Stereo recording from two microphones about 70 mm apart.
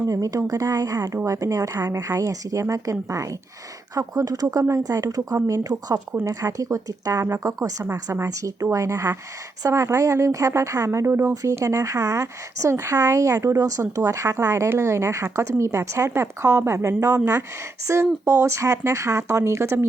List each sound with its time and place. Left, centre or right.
0.0 s speech: right
3.9 s speech: right